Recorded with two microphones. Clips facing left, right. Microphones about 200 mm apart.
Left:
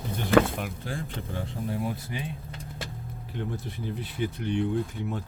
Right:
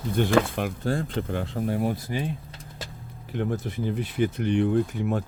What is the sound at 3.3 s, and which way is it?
Speech, 90° right.